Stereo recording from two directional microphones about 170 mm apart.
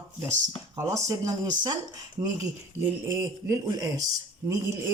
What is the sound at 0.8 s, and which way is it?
Speech, 15° right (ahead or behind).